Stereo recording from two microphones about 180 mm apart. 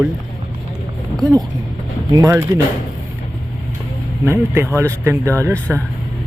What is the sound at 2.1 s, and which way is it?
Speech, 20° right (ahead or behind).